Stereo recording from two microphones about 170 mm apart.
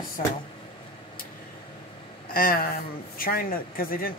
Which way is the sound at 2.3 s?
60° left (ahead or behind).